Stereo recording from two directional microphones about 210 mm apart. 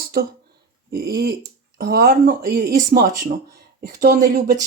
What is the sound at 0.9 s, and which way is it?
Speech, 45° right (ahead or behind).